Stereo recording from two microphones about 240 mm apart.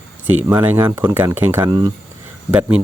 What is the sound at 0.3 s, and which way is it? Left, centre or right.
Speech, centre.